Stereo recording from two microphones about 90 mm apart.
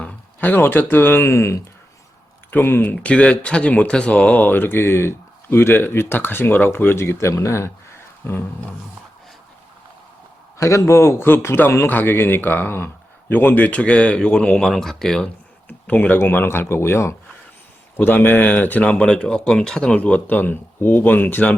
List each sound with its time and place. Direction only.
0.0 s speech: 15° left (ahead or behind)
10.6 s speech: 35° left (ahead or behind); by 15.3 s 5° left (ahead or behind)
15.9 s speech: 20° left (ahead or behind)